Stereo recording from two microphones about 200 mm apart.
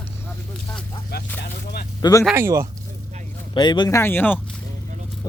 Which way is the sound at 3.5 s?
20° left (ahead or behind).